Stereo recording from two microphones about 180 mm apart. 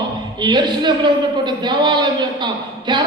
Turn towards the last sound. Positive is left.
turn(degrees=-25)  # may be behind; listen again after turning